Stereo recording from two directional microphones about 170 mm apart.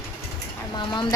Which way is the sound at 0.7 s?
25° left (ahead or behind).